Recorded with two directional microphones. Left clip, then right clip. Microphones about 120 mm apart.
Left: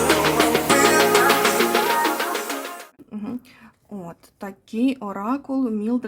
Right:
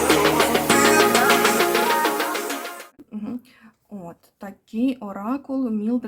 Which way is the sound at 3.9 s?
40° left (ahead or behind).